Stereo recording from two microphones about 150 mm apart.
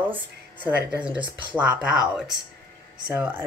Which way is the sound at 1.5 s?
10° right (ahead or behind).